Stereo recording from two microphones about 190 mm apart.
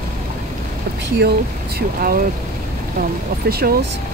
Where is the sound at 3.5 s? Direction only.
55° right (ahead or behind).